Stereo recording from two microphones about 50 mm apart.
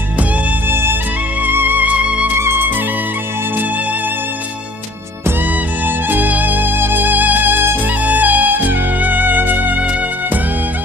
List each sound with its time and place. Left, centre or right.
0.7 s music: right
1.9 s music: right
2.4 s music: right
5.8 s music: right
8.0 s music: right